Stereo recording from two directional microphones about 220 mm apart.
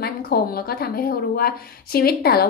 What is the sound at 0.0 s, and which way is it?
A woman's voice, 45° left (ahead or behind).